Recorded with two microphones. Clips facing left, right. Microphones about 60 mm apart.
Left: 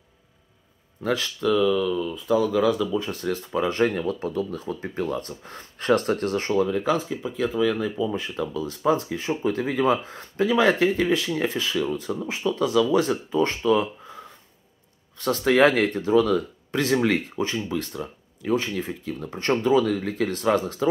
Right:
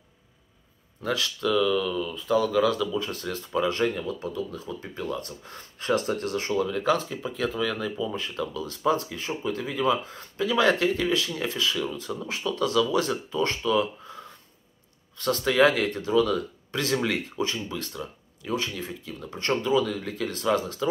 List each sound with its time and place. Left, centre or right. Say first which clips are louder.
1.0 s speech: left 3 dB; left
6.8 s speech: left 1 dB; centre
8.2 s speech: left 3 dB; left
10.5 s speech: left 2 dB; left
13.7 s a sound: left 3 dB; left
15.4 s speech: left 3 dB; left